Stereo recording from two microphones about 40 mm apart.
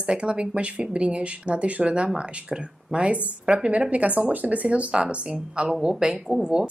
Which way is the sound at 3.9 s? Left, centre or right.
Right.